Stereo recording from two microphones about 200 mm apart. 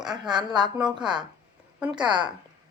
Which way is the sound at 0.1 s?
20° right (ahead or behind).